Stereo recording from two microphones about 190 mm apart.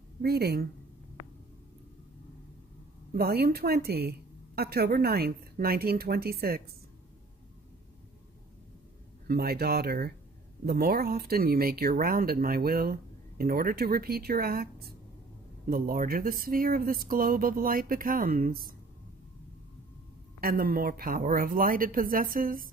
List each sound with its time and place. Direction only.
0.2 s a woman's voice: 55° right (ahead or behind)
3.1 s a woman's voice: 55° right (ahead or behind)
9.3 s a woman's voice: 55° right (ahead or behind)
20.3 s speech: 50° right (ahead or behind)